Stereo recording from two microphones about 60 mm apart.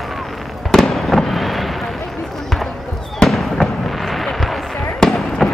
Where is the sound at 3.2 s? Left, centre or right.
Centre.